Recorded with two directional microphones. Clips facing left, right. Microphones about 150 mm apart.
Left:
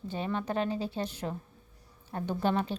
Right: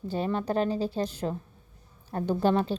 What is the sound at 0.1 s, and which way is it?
A woman's voice, 40° right (ahead or behind).